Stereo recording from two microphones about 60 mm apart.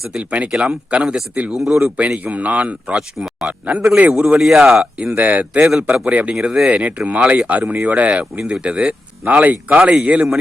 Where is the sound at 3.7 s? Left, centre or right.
Right.